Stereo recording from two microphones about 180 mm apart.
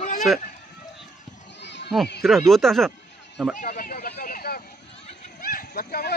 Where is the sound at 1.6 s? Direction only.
75° left (ahead or behind).